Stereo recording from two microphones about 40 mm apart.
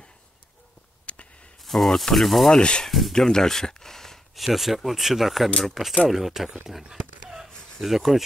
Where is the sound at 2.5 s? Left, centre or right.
Left.